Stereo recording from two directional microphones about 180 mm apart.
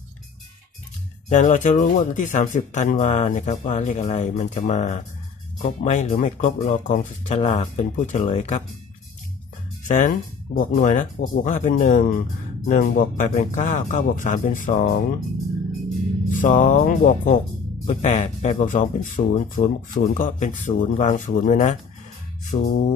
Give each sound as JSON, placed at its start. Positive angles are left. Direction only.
{"t": 1.3, "sound": "speech", "side_deg": 40}
{"t": 9.8, "sound": "speech", "side_deg": 45}
{"t": 16.3, "sound": "speech", "side_deg": 45}